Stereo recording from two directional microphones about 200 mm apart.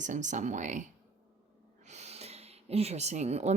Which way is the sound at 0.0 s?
40° right (ahead or behind).